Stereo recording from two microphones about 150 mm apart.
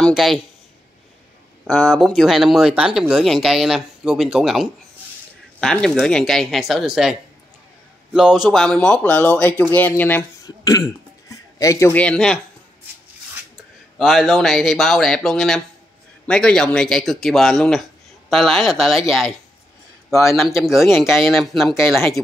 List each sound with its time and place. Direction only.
0.0 s a sound: centre (ahead or behind)
1.7 s speech: centre (ahead or behind)
10.4 s burping: 25° left (ahead or behind)
11.5 s speech: 20° left (ahead or behind)
11.9 s speech: 10° left (ahead or behind)
13.9 s speech: centre (ahead or behind)